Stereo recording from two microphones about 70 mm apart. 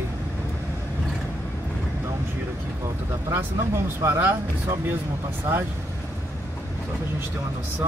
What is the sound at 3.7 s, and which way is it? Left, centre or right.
Speech, right.